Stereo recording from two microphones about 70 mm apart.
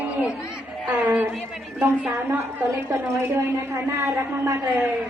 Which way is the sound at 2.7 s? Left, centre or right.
Right.